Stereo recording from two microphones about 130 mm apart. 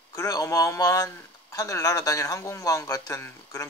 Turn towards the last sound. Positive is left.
turn(degrees=25)  # may be behind; listen again after turning